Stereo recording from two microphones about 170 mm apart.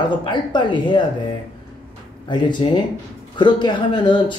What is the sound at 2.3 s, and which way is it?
Speech, 25° left (ahead or behind).